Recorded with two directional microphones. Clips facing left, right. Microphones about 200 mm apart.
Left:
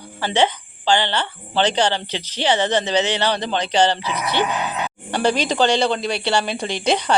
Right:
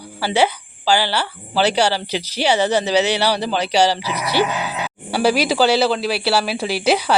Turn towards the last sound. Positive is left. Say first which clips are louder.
# right 2 dB
turn(degrees=-5)  # may be behind; listen again after turning